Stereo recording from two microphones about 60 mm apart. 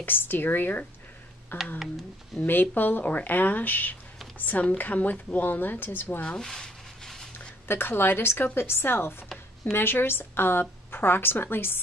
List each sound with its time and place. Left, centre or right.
0.0 s a woman's voice: left
6.2 s a sound: centre
7.6 s a woman's voice: left